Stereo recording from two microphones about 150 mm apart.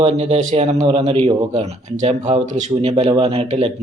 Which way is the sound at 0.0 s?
45° right (ahead or behind).